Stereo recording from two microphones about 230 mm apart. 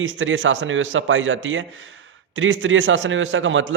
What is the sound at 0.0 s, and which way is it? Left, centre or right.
A man's voice, right.